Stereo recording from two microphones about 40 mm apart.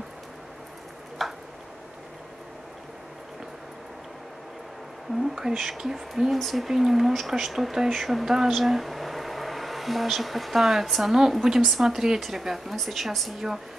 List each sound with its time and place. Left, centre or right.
1.2 s a sound: centre
5.2 s speech: centre
6.3 s a woman's voice: centre